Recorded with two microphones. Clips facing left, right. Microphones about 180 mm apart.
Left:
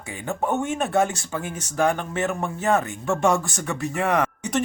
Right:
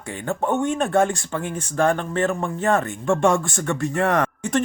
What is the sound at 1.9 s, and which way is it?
Speech, 15° left (ahead or behind).